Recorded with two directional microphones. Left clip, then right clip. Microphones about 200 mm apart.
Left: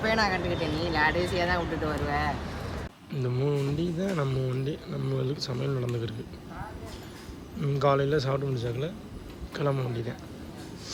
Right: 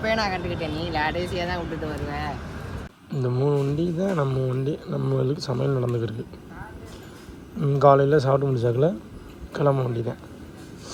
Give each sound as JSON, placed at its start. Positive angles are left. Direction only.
{"t": 0.0, "sound": "speech", "side_deg": 0}
{"t": 7.6, "sound": "speech", "side_deg": 5}